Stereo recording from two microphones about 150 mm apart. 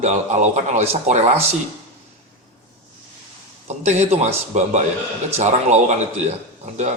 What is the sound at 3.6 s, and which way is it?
Speech, 45° right (ahead or behind).